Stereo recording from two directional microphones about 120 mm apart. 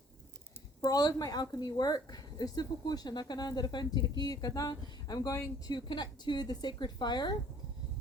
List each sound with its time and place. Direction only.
0.8 s a woman's voice: 35° left (ahead or behind)
5.7 s a woman's voice: 40° left (ahead or behind)